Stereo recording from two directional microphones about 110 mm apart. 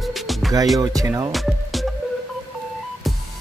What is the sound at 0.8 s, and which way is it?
Music, 30° right (ahead or behind).